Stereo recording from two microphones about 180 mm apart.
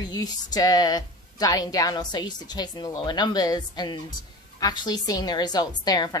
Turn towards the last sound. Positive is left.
turn(degrees=20)  # may be behind; listen again after turning